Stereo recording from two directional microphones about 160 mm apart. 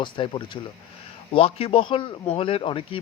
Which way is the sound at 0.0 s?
30° left (ahead or behind).